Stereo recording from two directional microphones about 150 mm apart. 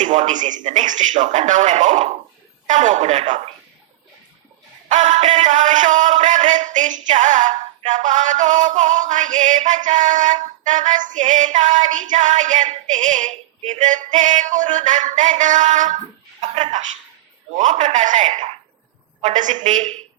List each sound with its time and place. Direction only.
0.0 s music: 55° right (ahead or behind)
4.9 s music: 55° right (ahead or behind)
17.6 s a man's voice: 55° right (ahead or behind)
19.2 s music: 55° right (ahead or behind)